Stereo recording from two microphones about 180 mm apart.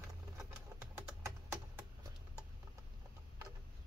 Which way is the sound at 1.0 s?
15° right (ahead or behind).